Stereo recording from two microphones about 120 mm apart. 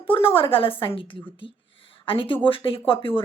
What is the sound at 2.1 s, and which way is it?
A woman's voice, 45° left (ahead or behind).